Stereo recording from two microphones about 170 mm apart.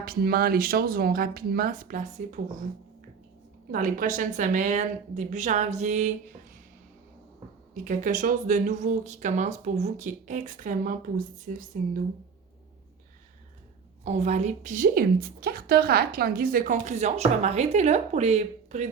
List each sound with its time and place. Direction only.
0.0 s speech: 60° right (ahead or behind); by 2.4 s 45° right (ahead or behind)
3.7 s a woman's voice: 55° right (ahead or behind)
7.7 s a woman's voice: 50° right (ahead or behind)
14.0 s a woman's voice: 40° right (ahead or behind)